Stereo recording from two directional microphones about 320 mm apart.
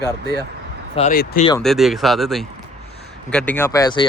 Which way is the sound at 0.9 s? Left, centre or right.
Left.